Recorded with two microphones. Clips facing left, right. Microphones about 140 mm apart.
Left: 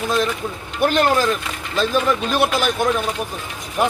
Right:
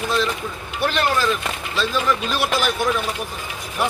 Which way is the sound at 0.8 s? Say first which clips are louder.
Left 4 dB; 45° left (ahead or behind).